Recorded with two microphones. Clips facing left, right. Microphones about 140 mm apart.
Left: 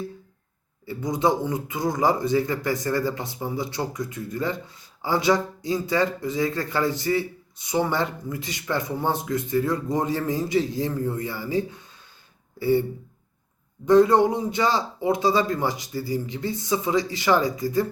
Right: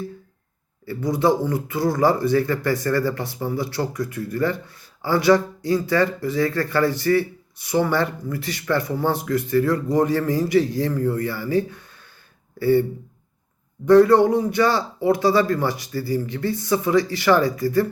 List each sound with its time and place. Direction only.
0.9 s a man's voice: 20° left (ahead or behind)
13.8 s a man's voice: 20° left (ahead or behind)